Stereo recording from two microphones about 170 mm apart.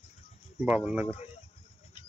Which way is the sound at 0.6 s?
10° right (ahead or behind).